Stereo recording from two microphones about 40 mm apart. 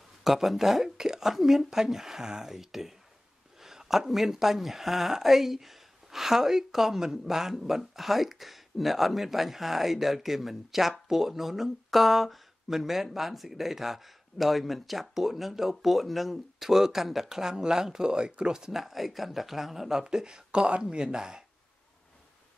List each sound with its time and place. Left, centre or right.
0.2 s speech: centre
0.8 s speech: centre
18.7 s speech: centre